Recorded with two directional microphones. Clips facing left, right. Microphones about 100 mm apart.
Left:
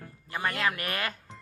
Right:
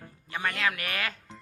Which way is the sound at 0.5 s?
35° left (ahead or behind).